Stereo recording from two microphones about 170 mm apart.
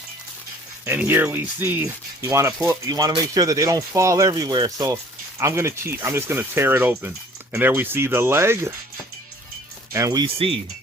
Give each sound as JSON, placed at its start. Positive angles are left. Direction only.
{"t": 0.9, "sound": "speech", "side_deg": -10}
{"t": 9.9, "sound": "speech", "side_deg": -20}